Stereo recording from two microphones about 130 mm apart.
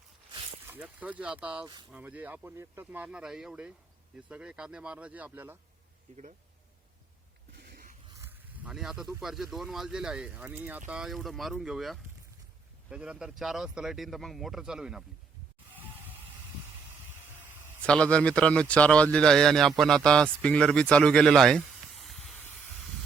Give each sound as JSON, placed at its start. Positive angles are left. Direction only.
{"t": 0.7, "sound": "speech", "side_deg": -10}
{"t": 1.6, "sound": "speech", "side_deg": -35}
{"t": 1.9, "sound": "speech", "side_deg": -10}
{"t": 8.3, "sound": "speech", "side_deg": -10}
{"t": 17.8, "sound": "a man's voice", "side_deg": 10}